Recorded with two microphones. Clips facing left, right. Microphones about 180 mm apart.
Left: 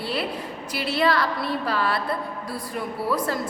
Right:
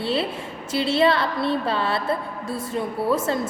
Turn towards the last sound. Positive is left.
turn(degrees=-25)  # may be behind; listen again after turning